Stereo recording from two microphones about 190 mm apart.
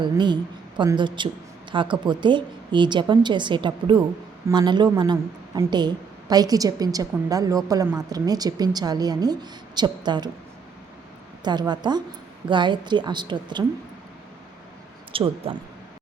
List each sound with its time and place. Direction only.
0.0 s a woman's voice: 25° right (ahead or behind)
11.4 s a woman's voice: 20° right (ahead or behind)
15.1 s speech: 25° right (ahead or behind)